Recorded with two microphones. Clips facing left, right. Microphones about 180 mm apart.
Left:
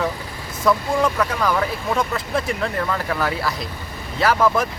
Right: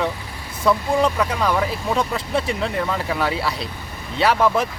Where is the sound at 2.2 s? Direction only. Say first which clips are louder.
Right 1 dB; 30° right (ahead or behind).